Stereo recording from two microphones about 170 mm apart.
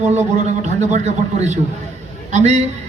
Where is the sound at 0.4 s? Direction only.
40° right (ahead or behind).